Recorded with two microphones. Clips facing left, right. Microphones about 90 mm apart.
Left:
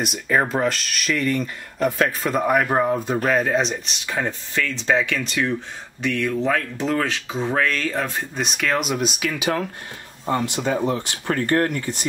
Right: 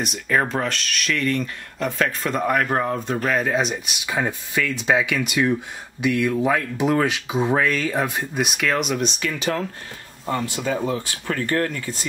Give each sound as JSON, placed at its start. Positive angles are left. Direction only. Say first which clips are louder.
{"t": 0.0, "sound": "speech", "louder": "left 1 dB", "side_deg": 5}
{"t": 11.4, "sound": "speech", "louder": "left 3 dB", "side_deg": 40}